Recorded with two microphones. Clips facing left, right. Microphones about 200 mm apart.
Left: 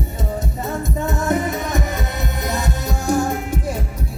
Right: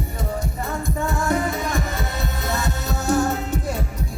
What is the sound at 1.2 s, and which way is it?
Music, 20° left (ahead or behind).